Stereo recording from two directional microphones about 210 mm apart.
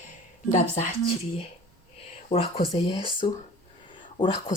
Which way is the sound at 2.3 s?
25° left (ahead or behind).